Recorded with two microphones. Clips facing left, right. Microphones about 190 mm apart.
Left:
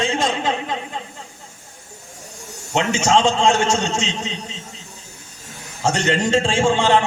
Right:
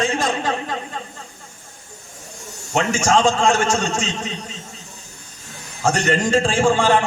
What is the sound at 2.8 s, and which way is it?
A man's voice, 25° left (ahead or behind).